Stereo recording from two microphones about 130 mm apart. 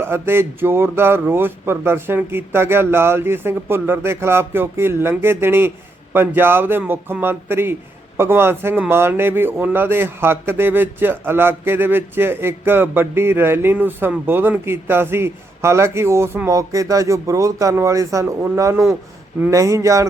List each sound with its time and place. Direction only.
0.0 s a man's voice: 20° right (ahead or behind)